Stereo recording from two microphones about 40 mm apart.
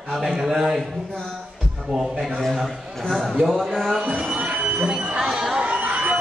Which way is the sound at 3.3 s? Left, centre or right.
Centre.